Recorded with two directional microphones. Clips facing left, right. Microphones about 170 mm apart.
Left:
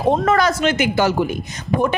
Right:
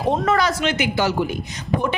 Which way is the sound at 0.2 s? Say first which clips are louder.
Left 3 dB; 50° left (ahead or behind).